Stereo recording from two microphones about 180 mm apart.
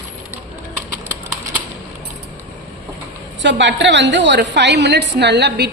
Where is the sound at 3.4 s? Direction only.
80° right.